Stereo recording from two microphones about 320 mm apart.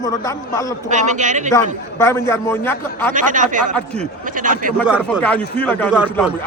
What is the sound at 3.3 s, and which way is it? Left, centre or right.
A man's voice, right.